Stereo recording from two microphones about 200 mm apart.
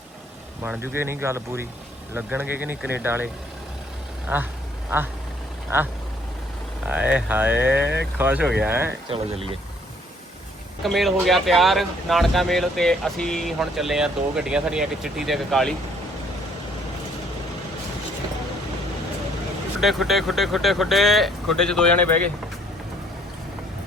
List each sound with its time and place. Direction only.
0.6 s speech: 10° right (ahead or behind)
4.3 s speech: 10° right (ahead or behind)
5.7 s speech: 10° right (ahead or behind)
9.0 s speech: 25° right (ahead or behind)
10.8 s speech: centre (ahead or behind)
19.8 s speech: centre (ahead or behind)